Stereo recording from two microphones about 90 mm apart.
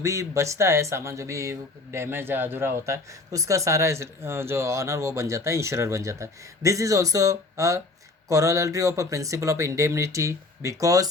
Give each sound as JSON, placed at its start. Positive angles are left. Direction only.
{"t": 0.0, "sound": "speech", "side_deg": -35}